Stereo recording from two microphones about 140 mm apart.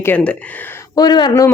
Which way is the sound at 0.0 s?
15° left (ahead or behind).